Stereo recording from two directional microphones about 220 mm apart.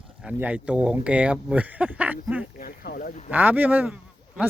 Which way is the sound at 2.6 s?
40° left (ahead or behind).